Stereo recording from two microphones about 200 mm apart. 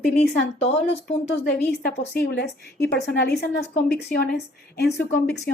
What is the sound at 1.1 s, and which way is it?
A woman's voice, 55° left (ahead or behind).